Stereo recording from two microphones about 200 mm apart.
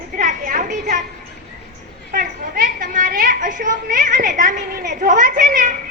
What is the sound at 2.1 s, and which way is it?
A woman's voice, 40° right (ahead or behind).